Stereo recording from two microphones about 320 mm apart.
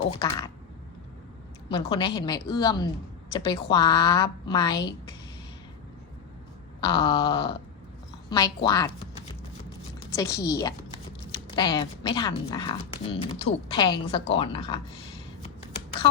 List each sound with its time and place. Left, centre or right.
0.0 s speech: centre
1.7 s speech: centre
6.8 s speech: centre
10.2 s speech: centre